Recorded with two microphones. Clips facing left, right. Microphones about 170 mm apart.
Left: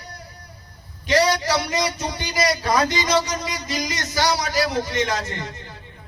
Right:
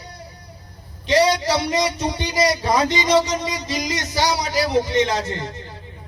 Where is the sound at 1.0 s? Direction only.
25° right (ahead or behind).